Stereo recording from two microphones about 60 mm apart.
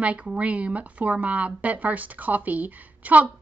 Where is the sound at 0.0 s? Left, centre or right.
Right.